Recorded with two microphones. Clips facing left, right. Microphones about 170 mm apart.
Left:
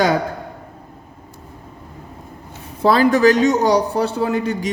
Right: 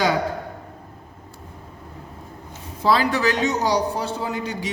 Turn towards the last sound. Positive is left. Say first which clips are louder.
# left 7 dB
turn(degrees=50)  # may be behind; listen again after turning